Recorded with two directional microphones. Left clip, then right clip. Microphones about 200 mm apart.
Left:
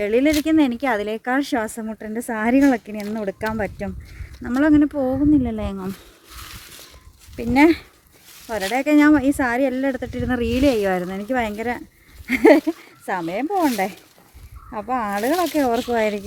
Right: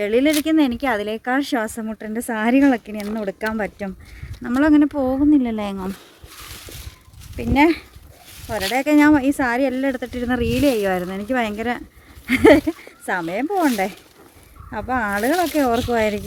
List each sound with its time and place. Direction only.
0.0 s speech: 5° right (ahead or behind)
7.3 s speech: 10° left (ahead or behind)
8.7 s speech: centre (ahead or behind); by 16.0 s 25° right (ahead or behind)
16.0 s speech: 10° right (ahead or behind)